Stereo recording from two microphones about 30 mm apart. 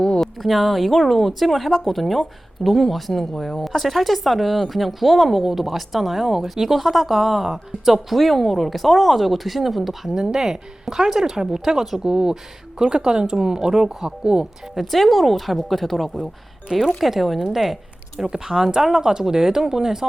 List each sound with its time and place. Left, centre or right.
0.2 s speech: centre
8.1 s speech: centre
10.1 s speech: centre
12.0 s speech: right
14.8 s speech: centre
16.6 s speech: right
17.0 s speech: centre
18.3 s speech: centre